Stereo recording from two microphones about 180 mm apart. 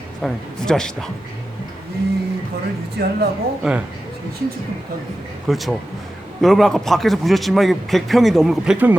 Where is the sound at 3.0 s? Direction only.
65° right (ahead or behind).